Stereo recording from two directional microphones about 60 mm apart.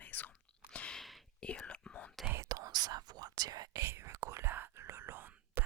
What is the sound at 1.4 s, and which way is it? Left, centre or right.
Whispering, centre.